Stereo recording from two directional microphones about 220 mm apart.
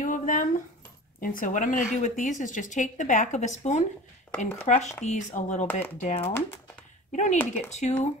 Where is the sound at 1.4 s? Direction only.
35° left (ahead or behind).